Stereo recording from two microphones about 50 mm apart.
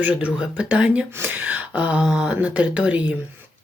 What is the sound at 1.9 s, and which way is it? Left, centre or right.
Speech, centre.